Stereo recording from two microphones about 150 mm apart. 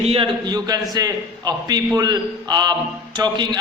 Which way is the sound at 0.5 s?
25° right (ahead or behind).